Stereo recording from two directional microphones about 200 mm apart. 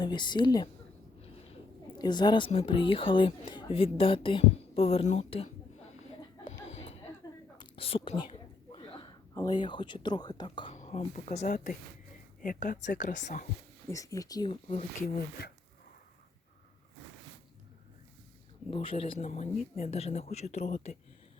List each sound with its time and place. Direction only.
0.0 s a woman's voice: 20° left (ahead or behind)
2.0 s a woman's voice: 20° left (ahead or behind)
6.4 s music: 30° left (ahead or behind)
7.2 s a sound: 20° left (ahead or behind)
7.6 s whispering: 30° left (ahead or behind)
8.2 s a sound: 25° left (ahead or behind)
9.3 s a woman's voice: 20° left (ahead or behind)
10.8 s speech: 35° left (ahead or behind)
13.9 s a woman's voice: 15° left (ahead or behind)
15.0 s speech: 50° left (ahead or behind)
18.7 s a woman's voice: 25° left (ahead or behind)